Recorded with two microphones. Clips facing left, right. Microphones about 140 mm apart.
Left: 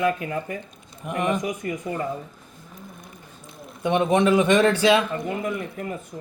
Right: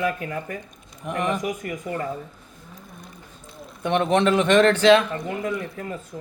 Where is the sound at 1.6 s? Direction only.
25° left (ahead or behind).